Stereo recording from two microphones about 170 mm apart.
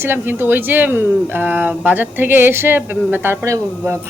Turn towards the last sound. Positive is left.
turn(degrees=-15)  # may be behind; listen again after turning